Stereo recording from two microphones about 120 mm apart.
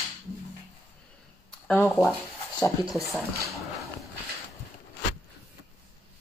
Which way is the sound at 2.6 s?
30° left (ahead or behind).